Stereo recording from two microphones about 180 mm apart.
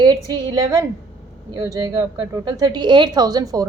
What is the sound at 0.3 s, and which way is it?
A woman's voice, 20° right (ahead or behind).